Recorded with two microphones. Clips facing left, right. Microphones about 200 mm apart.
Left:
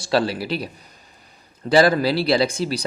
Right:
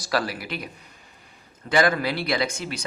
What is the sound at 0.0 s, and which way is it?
Speech, 30° left (ahead or behind).